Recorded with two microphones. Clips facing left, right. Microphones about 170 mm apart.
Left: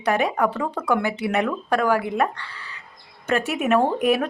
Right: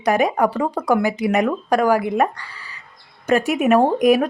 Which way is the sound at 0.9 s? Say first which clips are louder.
Right 4 dB; 10° right (ahead or behind).